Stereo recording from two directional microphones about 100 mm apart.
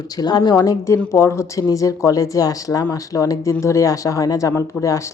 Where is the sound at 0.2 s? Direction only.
45° left (ahead or behind).